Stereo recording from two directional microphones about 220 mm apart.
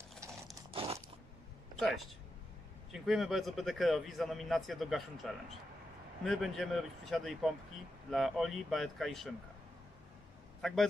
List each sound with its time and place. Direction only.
0.7 s biting: 25° right (ahead or behind)
2.9 s speech: centre (ahead or behind)
10.6 s a man's voice: centre (ahead or behind)